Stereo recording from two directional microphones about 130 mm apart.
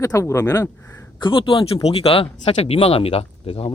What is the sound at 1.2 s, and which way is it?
Speech, 40° left (ahead or behind).